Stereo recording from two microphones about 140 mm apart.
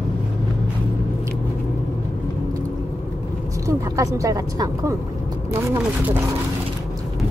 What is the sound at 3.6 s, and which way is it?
Speech, 25° right (ahead or behind).